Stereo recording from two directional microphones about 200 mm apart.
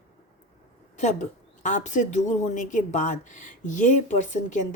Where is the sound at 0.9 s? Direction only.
35° left (ahead or behind).